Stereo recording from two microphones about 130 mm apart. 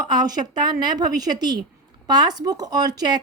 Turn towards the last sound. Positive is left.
turn(degrees=-30)  # may be behind; listen again after turning